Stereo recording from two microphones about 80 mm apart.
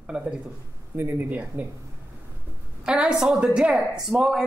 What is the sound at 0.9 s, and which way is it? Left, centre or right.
Speech, right.